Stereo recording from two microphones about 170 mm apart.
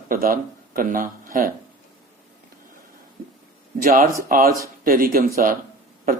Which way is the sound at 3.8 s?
55° right (ahead or behind).